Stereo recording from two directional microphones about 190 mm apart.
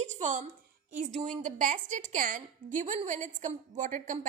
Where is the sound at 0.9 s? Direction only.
40° right (ahead or behind).